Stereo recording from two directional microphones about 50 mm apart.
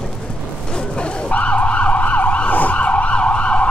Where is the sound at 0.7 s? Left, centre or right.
Centre.